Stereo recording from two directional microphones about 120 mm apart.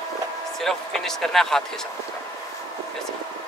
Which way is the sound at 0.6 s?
5° left (ahead or behind).